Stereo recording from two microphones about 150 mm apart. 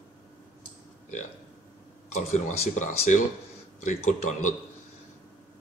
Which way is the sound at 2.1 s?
55° left (ahead or behind).